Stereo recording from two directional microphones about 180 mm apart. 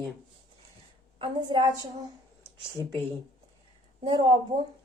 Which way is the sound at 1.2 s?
25° right (ahead or behind).